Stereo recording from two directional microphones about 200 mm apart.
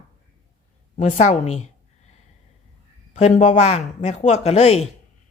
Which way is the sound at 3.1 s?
35° left (ahead or behind).